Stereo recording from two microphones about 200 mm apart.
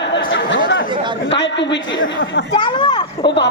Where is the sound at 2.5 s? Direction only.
20° left (ahead or behind).